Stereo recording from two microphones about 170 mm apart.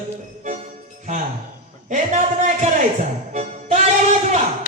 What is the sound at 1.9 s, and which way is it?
Speech, 45° right (ahead or behind).